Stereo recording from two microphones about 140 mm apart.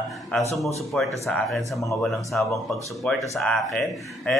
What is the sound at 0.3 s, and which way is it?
A man's voice, 10° left (ahead or behind).